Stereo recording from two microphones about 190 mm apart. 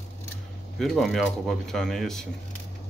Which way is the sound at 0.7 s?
Centre (ahead or behind).